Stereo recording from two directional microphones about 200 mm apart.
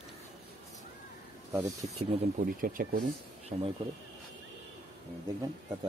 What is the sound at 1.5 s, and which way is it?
Speech, 15° right (ahead or behind).